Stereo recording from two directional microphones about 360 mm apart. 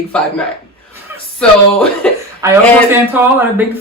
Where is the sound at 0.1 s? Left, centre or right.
Centre.